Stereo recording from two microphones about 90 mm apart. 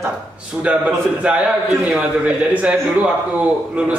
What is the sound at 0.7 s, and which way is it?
A man's voice, 10° right (ahead or behind).